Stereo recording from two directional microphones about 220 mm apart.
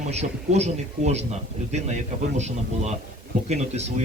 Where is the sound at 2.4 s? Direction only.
30° right (ahead or behind).